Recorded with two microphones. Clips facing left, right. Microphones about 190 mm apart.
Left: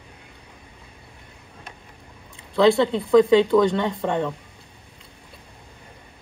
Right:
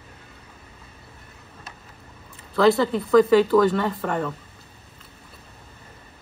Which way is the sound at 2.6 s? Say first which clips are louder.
Left 1 dB; 25° left (ahead or behind).